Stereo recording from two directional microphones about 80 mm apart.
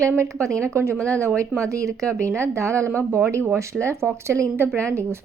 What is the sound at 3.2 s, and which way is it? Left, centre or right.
A woman's voice, right.